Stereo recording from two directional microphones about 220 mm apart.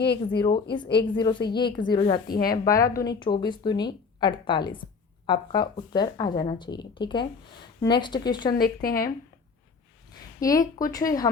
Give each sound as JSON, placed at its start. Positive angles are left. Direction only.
{"t": 0.3, "sound": "speech", "side_deg": 20}
{"t": 2.2, "sound": "speech", "side_deg": 45}
{"t": 2.6, "sound": "speech", "side_deg": 15}
{"t": 8.5, "sound": "speech", "side_deg": 45}
{"t": 10.4, "sound": "speech", "side_deg": 15}